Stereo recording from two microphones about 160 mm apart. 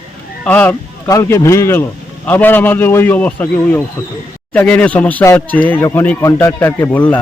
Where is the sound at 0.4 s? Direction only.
10° left (ahead or behind).